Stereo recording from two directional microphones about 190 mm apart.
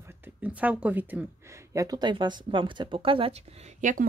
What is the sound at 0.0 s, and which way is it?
Speech, 10° right (ahead or behind).